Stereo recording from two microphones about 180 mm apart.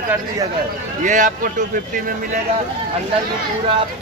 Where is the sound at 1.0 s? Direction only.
45° right (ahead or behind).